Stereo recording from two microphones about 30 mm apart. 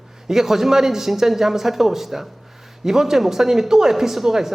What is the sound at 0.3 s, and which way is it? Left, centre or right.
Speech, centre.